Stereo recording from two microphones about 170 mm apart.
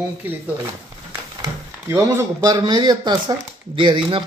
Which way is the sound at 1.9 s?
15° right (ahead or behind).